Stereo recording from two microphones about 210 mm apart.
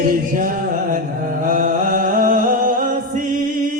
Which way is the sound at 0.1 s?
40° right (ahead or behind).